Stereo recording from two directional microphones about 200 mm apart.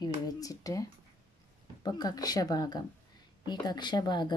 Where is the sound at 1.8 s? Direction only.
20° left (ahead or behind).